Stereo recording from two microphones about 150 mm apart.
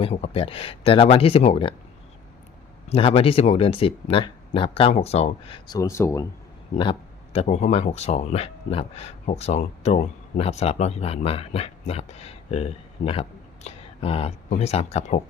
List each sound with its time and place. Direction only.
0.0 s speech: 40° left (ahead or behind)
2.9 s speech: 40° left (ahead or behind); by 6.2 s 20° left (ahead or behind)
7.3 s speech: 50° left (ahead or behind)